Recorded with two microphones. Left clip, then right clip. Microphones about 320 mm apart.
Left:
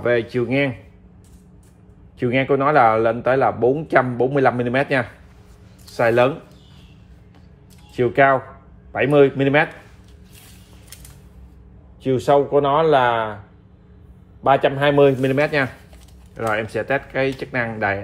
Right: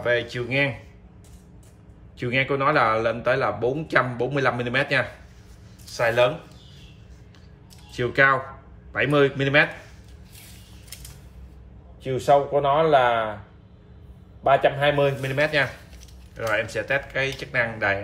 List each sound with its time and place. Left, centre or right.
0.0 s a man's voice: centre
2.1 s a man's voice: centre
7.9 s a man's voice: centre
12.0 s speech: centre
14.4 s a man's voice: centre